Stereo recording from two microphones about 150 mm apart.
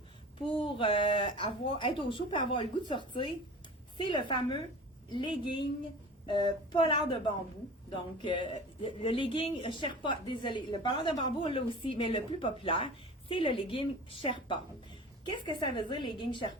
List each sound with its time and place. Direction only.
0.3 s a woman's voice: 35° left (ahead or behind)